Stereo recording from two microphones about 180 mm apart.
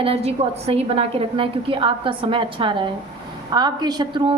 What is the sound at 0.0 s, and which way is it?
A woman's voice, 35° right (ahead or behind).